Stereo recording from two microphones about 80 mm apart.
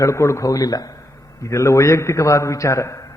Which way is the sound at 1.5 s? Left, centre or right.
Left.